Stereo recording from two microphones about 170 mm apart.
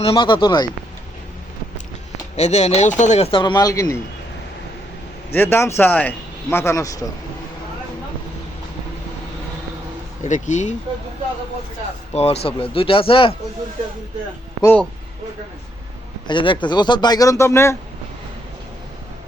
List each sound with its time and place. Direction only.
0.0 s speech: 30° left (ahead or behind)
2.3 s speech: 40° left (ahead or behind); by 4.0 s 20° left (ahead or behind)
5.3 s a man's voice: 15° left (ahead or behind)
10.2 s speech: 45° left (ahead or behind)
12.1 s speech: 40° left (ahead or behind)
14.6 s speech: 10° left (ahead or behind)
16.2 s speech: 30° left (ahead or behind)